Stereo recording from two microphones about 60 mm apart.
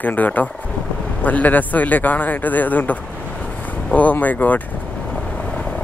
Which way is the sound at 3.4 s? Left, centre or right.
Left.